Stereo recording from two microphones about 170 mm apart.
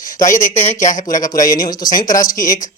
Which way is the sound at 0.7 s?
45° left (ahead or behind).